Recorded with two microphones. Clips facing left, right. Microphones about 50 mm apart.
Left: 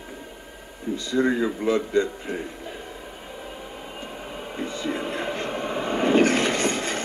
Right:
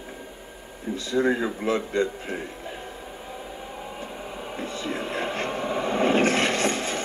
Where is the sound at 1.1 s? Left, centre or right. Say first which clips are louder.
Left 1 dB; centre.